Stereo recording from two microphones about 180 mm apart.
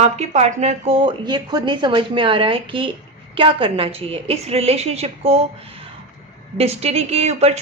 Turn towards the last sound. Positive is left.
turn(degrees=-35)  # may be behind; listen again after turning